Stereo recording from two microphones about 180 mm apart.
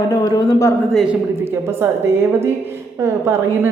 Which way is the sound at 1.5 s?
15° right (ahead or behind).